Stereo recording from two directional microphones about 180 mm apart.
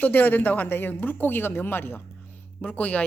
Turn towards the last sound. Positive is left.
turn(degrees=10)  # may be behind; listen again after turning